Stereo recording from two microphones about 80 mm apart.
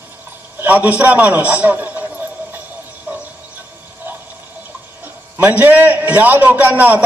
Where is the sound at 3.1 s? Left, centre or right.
Right.